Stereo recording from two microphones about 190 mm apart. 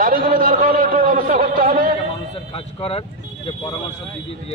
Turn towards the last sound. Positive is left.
turn(degrees=30)  # may be behind; listen again after turning